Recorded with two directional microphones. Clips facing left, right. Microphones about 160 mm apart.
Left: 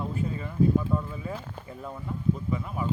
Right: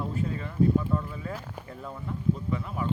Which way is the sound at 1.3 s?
10° right (ahead or behind).